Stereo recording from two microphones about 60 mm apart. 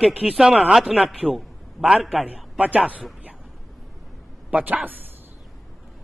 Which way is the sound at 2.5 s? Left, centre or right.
Right.